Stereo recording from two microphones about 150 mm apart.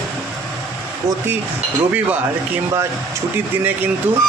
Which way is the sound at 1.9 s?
10° right (ahead or behind).